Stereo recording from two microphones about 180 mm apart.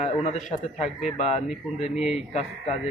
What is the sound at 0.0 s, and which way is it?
Speech, 40° left (ahead or behind).